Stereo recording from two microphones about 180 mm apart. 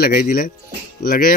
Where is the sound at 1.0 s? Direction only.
55° left (ahead or behind).